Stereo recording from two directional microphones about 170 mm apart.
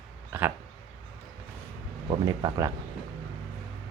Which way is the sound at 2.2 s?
25° right (ahead or behind).